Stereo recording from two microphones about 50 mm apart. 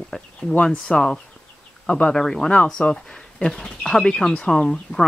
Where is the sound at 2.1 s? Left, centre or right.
Centre.